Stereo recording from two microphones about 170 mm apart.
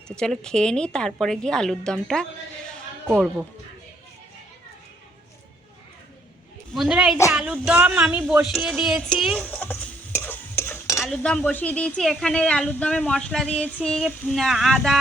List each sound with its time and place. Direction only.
0.2 s speech: 5° left (ahead or behind)
6.7 s speech: 5° right (ahead or behind); by 11.0 s 15° left (ahead or behind)
11.0 s speech: 5° left (ahead or behind)